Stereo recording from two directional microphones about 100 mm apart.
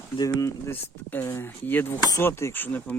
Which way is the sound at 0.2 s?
35° left (ahead or behind).